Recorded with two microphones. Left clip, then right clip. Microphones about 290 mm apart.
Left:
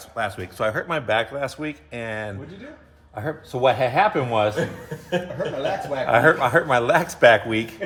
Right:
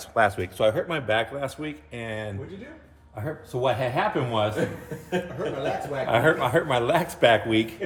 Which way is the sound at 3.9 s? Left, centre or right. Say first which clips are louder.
Left 6 dB; centre.